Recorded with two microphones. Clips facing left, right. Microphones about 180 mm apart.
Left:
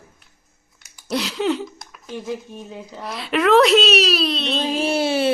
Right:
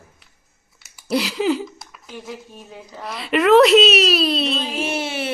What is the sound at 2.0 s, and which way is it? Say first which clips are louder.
Speech: left 6 dB; 20° left (ahead or behind).